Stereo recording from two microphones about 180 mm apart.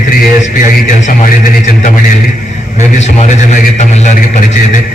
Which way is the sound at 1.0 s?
45° left (ahead or behind).